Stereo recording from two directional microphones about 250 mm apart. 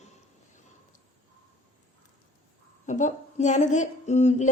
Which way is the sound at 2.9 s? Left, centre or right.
Left.